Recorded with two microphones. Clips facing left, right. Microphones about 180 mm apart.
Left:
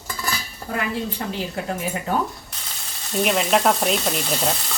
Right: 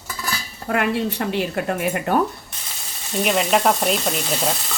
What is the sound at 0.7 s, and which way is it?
Speech, 70° right (ahead or behind).